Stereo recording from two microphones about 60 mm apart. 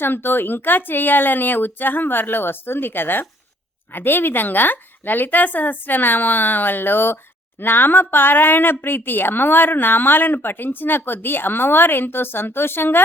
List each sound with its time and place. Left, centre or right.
0.0 s a woman's voice: left